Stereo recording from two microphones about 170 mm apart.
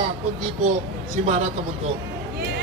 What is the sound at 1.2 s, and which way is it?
Speech, 40° right (ahead or behind).